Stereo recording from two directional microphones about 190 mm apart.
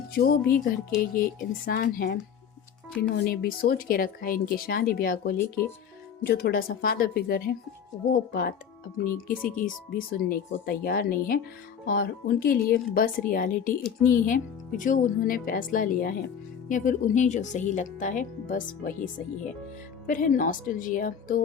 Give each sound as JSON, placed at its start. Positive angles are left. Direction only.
{"t": 0.1, "sound": "speech", "side_deg": 55}